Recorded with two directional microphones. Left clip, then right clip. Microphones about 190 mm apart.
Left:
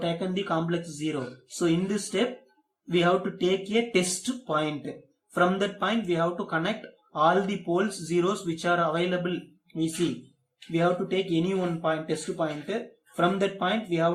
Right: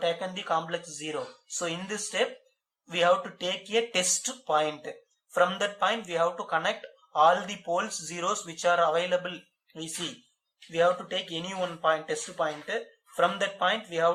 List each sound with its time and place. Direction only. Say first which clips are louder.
0.0 s speech: even; 30° right (ahead or behind)
10.7 s speech: even; 35° right (ahead or behind)